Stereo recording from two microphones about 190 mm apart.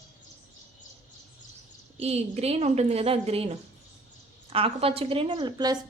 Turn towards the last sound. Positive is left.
turn(degrees=-20)  # may be behind; listen again after turning